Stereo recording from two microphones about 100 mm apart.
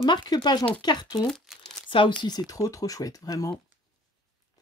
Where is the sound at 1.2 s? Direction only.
5° left (ahead or behind).